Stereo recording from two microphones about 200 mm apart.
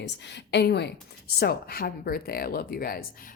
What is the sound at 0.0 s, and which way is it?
Speech, 60° left (ahead or behind).